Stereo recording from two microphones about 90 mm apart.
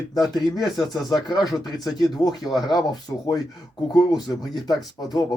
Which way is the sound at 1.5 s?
Centre (ahead or behind).